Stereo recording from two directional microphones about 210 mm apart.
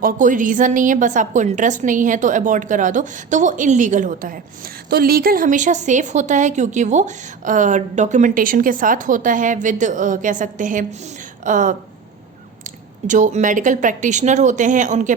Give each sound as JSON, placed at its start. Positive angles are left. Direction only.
{"t": 0.0, "sound": "speech", "side_deg": -40}